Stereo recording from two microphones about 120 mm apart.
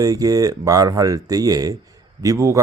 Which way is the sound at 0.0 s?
30° right (ahead or behind).